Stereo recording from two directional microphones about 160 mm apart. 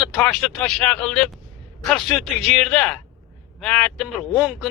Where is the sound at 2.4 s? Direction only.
Centre (ahead or behind).